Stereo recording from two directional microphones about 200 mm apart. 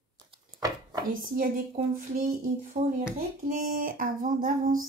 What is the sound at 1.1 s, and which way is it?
Speech, 45° right (ahead or behind).